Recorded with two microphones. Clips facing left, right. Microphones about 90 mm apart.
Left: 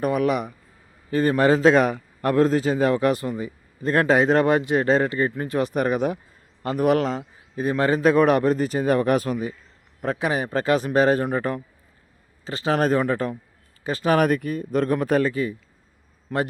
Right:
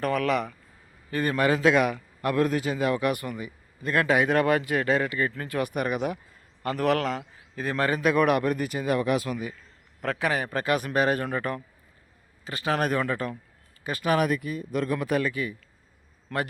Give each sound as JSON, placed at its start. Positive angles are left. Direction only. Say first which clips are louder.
{"t": 0.0, "sound": "a man's voice", "louder": "left 3 dB", "side_deg": 15}
{"t": 1.1, "sound": "a man's voice", "louder": "left 6 dB", "side_deg": 30}
{"t": 6.6, "sound": "a man's voice", "louder": "left 4 dB", "side_deg": 20}
{"t": 10.0, "sound": "a man's voice", "louder": "left 3 dB", "side_deg": 20}
{"t": 14.2, "sound": "a man's voice", "louder": "left 5 dB", "side_deg": 45}
{"t": 16.3, "sound": "a man's voice", "louder": "left 5 dB", "side_deg": 10}